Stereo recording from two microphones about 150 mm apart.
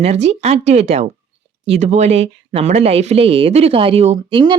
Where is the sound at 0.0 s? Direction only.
45° right (ahead or behind).